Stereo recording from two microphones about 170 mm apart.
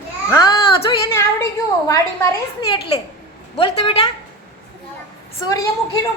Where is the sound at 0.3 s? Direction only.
25° left (ahead or behind).